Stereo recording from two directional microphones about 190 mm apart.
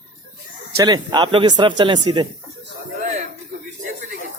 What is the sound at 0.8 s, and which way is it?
Speech, 20° right (ahead or behind).